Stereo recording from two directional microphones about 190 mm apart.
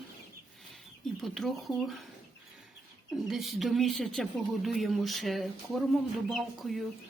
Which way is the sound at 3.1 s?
Centre (ahead or behind).